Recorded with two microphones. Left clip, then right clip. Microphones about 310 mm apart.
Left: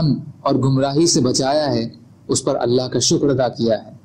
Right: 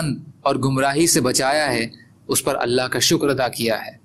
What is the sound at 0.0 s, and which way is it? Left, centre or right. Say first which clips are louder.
Speech: left 2 dB; right.